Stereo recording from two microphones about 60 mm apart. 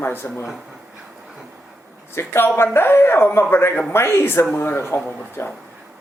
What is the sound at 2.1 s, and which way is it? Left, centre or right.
A man's voice, left.